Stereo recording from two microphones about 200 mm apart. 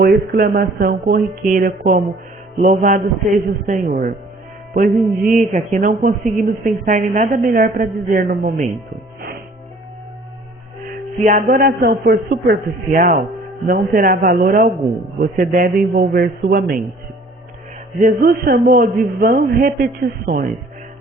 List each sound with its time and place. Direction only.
0.0 s a man's voice: 50° right (ahead or behind)
10.8 s speech: 40° right (ahead or behind)
18.0 s speech: 50° right (ahead or behind)